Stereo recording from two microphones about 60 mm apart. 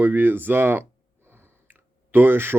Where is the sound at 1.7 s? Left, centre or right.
Right.